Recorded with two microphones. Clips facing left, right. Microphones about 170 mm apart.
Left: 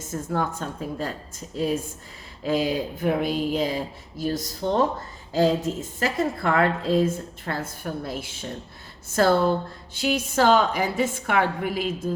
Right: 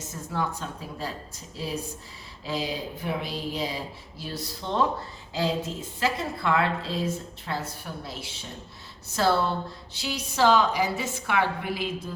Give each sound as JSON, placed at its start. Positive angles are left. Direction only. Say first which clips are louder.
{"t": 0.0, "sound": "speech", "louder": "left 4 dB", "side_deg": 50}